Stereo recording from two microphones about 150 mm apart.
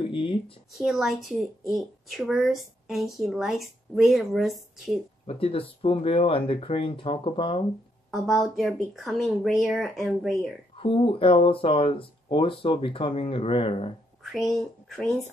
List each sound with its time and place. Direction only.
0.0 s a sound: 35° left (ahead or behind)
0.7 s speech: centre (ahead or behind)
5.2 s speech: 40° left (ahead or behind)
8.1 s speech: centre (ahead or behind)
10.8 s speech: 35° left (ahead or behind)
14.2 s speech: centre (ahead or behind)